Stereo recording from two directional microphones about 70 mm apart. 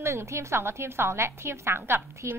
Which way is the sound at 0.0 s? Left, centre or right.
Right.